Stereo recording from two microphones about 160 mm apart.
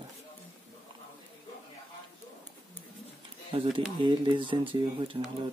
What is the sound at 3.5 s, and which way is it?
Speech, 35° right (ahead or behind).